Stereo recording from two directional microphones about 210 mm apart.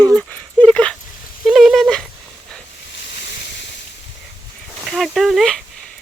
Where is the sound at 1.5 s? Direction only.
Centre (ahead or behind).